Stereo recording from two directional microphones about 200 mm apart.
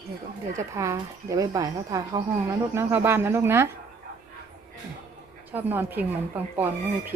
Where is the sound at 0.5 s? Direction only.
15° right (ahead or behind).